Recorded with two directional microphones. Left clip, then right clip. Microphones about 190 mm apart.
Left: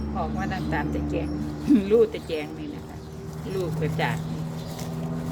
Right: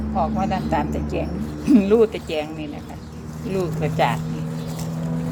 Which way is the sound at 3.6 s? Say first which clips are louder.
Right 7 dB; 20° right (ahead or behind).